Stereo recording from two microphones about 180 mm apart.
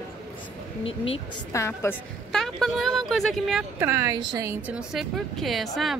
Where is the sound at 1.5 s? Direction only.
15° left (ahead or behind).